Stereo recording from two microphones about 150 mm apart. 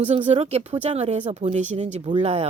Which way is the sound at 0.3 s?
45° right (ahead or behind).